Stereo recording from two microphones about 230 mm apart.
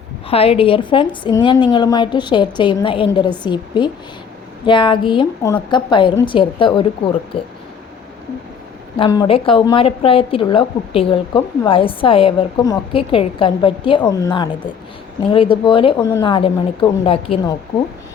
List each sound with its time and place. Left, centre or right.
0.3 s a woman's voice: left
9.0 s a woman's voice: centre